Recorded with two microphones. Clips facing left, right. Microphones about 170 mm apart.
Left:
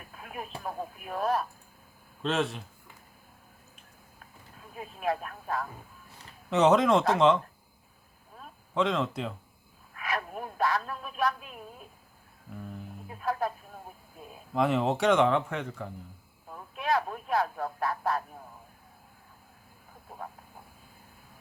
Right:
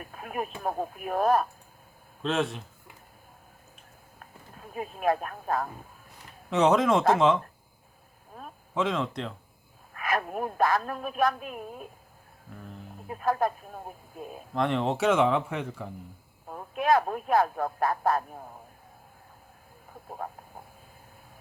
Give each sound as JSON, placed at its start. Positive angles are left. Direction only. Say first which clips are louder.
{"t": 0.1, "sound": "a sound", "louder": "right 7 dB", "side_deg": -55}
{"t": 0.6, "sound": "speech", "louder": "right 6 dB", "side_deg": -50}
{"t": 2.2, "sound": "speech", "louder": "right 1 dB", "side_deg": 0}
{"t": 4.7, "sound": "speech", "louder": "right 5 dB", "side_deg": -55}
{"t": 6.5, "sound": "speech", "louder": "even", "side_deg": 0}
{"t": 8.7, "sound": "speech", "louder": "even", "side_deg": 0}
{"t": 9.9, "sound": "speech", "louder": "right 4 dB", "side_deg": -50}
{"t": 13.1, "sound": "speech", "louder": "right 4 dB", "side_deg": -50}
{"t": 14.5, "sound": "speech", "louder": "left 1 dB", "side_deg": 5}
{"t": 16.5, "sound": "speech", "louder": "right 5 dB", "side_deg": -50}